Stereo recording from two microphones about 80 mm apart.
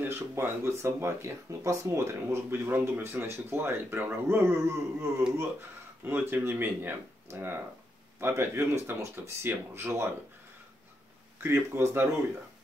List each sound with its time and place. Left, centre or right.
0.1 s speech: right
11.4 s speech: right